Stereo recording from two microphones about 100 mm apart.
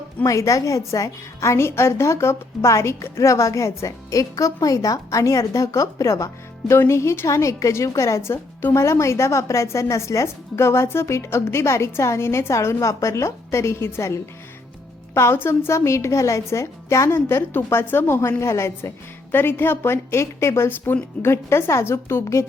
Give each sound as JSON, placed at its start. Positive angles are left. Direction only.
{"t": 0.2, "sound": "a woman's voice", "side_deg": 35}